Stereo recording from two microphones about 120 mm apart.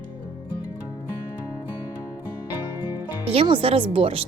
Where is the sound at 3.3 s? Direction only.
50° right (ahead or behind).